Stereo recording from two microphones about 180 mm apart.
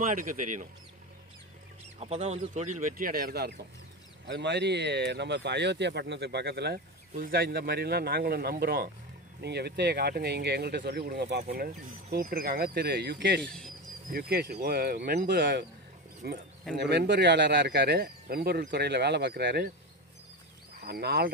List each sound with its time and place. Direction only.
0.0 s speech: 45° right (ahead or behind)
2.0 s speech: 35° right (ahead or behind); by 3.5 s 60° right (ahead or behind)
4.3 s speech: 70° right (ahead or behind)
13.5 s speech: 5° left (ahead or behind)
14.1 s speech: 60° right (ahead or behind)
20.8 s speech: 60° right (ahead or behind)